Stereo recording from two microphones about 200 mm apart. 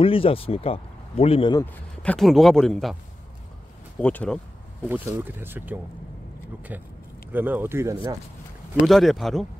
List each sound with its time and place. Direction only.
0.0 s a man's voice: 25° left (ahead or behind)
1.6 s speech: 5° left (ahead or behind)
4.0 s speech: 5° left (ahead or behind)
4.8 s speech: 10° right (ahead or behind)
8.8 s speech: centre (ahead or behind)